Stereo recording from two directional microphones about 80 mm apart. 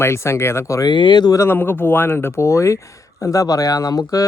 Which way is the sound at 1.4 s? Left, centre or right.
Left.